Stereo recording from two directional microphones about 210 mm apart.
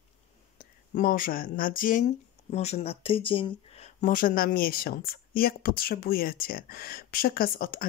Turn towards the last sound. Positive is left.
turn(degrees=45)  # may be behind; listen again after turning